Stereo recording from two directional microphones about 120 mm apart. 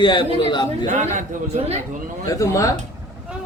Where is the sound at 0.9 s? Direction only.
90° right.